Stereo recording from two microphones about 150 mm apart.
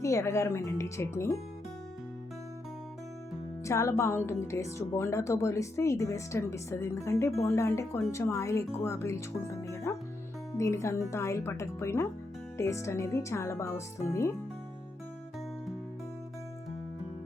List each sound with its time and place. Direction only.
0.0 s speech: 20° left (ahead or behind)
3.6 s speech: 20° left (ahead or behind)